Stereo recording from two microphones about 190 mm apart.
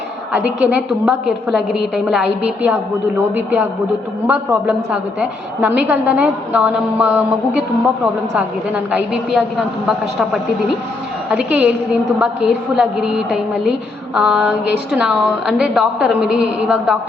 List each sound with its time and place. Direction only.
0.6 s a woman's voice: 5° right (ahead or behind)
11.3 s a woman's voice: 5° right (ahead or behind)